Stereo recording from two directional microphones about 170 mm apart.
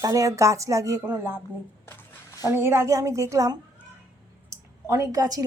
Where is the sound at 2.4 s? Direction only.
15° right (ahead or behind).